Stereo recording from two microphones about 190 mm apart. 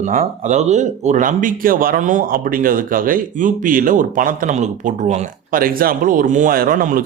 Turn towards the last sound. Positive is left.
turn(degrees=-45)  # may be behind; listen again after turning